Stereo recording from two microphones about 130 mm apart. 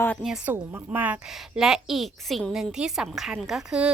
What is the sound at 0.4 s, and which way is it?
A woman's voice, 15° right (ahead or behind).